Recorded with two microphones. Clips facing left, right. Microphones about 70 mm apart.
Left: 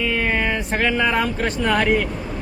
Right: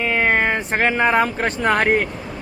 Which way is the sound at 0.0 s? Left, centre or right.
Right.